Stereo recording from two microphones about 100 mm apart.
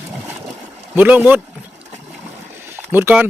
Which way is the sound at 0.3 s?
20° right (ahead or behind).